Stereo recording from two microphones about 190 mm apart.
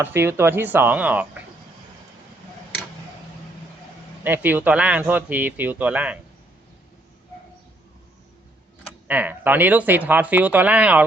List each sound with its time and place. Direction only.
0.0 s speech: 10° right (ahead or behind)
4.2 s speech: 10° right (ahead or behind)
9.0 s speech: 10° right (ahead or behind)